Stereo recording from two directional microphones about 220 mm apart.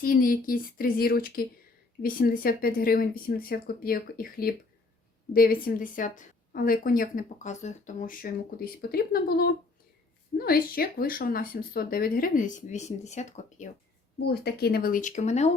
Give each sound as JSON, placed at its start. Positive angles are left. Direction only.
{"t": 0.0, "sound": "speech", "side_deg": 40}
{"t": 14.2, "sound": "speech", "side_deg": 50}